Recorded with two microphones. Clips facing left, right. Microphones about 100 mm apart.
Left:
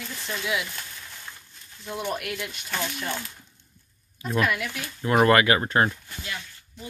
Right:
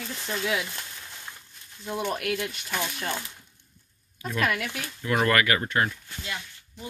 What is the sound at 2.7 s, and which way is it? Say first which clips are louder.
Speech: even; 10° right (ahead or behind).